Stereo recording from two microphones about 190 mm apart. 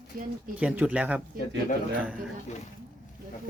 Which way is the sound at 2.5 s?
40° left (ahead or behind).